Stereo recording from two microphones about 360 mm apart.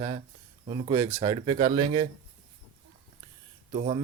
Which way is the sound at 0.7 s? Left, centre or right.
Centre.